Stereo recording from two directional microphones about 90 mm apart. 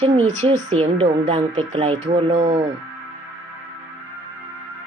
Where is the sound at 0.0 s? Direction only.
90° right.